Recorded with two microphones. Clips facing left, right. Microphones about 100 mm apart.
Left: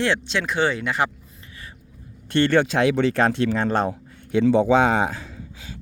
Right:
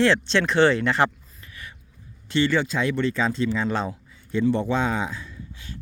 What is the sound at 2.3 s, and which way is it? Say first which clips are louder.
Speech: left 4 dB; 60° left (ahead or behind).